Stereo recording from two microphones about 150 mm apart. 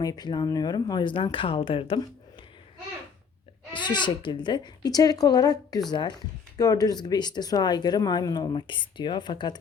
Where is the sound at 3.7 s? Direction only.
30° left (ahead or behind).